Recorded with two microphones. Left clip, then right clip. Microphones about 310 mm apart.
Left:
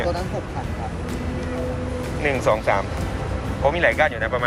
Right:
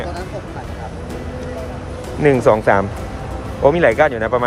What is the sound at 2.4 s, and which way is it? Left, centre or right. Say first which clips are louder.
Speech: right 7 dB; right.